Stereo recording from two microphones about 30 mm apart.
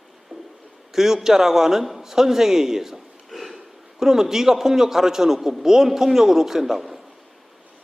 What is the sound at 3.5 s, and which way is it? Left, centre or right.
A man's voice, centre.